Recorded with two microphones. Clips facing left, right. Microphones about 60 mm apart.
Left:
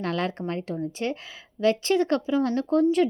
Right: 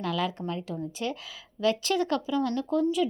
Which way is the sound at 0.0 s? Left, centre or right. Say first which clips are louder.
Left 2 dB; left.